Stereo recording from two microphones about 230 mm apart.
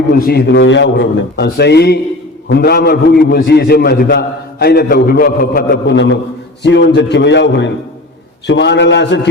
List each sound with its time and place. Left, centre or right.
0.1 s a man's voice: left